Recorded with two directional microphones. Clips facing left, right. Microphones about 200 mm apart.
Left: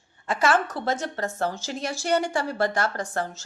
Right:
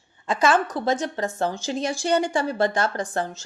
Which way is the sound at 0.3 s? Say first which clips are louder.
Right 2 dB; 15° right (ahead or behind).